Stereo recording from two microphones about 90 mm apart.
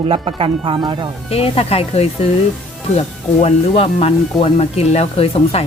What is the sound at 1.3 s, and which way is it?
Speech, 90° left.